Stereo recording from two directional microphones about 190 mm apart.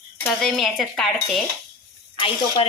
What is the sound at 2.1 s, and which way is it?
Speech, 30° left (ahead or behind).